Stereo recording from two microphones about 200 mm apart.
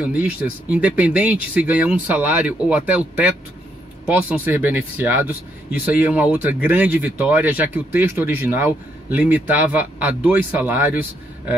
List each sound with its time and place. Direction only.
0.1 s speech: 5° right (ahead or behind)